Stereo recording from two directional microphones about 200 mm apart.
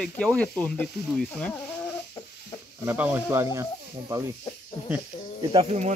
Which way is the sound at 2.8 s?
10° right (ahead or behind).